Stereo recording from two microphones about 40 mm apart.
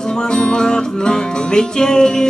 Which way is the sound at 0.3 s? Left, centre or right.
Centre.